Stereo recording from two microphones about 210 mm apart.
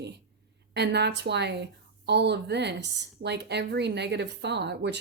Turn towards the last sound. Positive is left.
turn(degrees=-55)  # may be behind; listen again after turning